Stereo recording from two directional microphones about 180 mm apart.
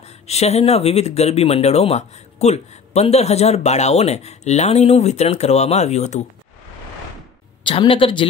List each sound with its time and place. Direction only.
0.3 s speech: 35° left (ahead or behind)
7.6 s speech: 30° left (ahead or behind)